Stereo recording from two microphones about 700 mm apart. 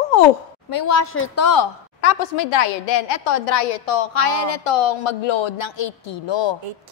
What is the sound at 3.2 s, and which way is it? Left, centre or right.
A woman's voice, left.